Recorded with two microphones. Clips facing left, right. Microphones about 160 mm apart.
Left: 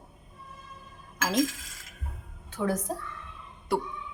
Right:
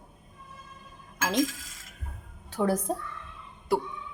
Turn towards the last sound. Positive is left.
turn(degrees=0)  # may be behind; listen again after turning